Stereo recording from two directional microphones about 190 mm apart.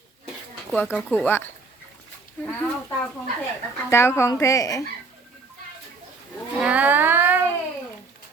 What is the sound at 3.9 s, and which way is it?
Speech, 15° left (ahead or behind).